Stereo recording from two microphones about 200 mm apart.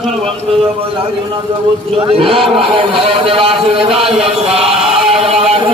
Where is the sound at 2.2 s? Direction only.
25° right (ahead or behind).